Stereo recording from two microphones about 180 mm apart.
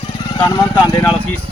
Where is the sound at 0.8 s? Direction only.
20° left (ahead or behind).